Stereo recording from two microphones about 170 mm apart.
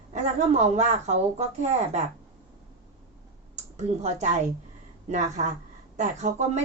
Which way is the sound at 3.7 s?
40° right (ahead or behind).